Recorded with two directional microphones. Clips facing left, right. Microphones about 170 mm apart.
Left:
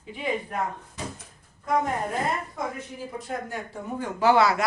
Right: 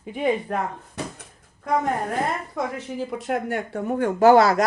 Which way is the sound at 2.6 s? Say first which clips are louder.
Right 4 dB; 85° right.